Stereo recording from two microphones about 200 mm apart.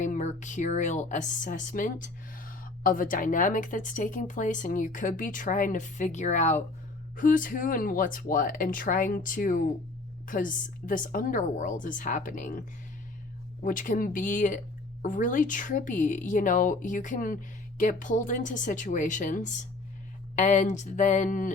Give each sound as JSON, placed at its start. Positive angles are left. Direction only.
{"t": 0.0, "sound": "speech", "side_deg": 35}
{"t": 13.7, "sound": "speech", "side_deg": 40}